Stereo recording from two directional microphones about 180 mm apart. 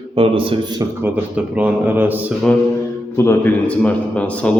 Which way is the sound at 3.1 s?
10° left (ahead or behind).